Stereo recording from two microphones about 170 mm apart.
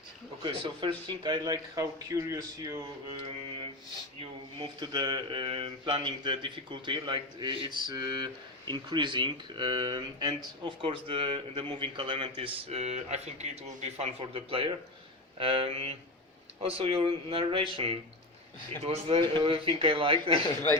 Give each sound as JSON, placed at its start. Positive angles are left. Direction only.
{"t": 0.4, "sound": "a man's voice", "side_deg": -30}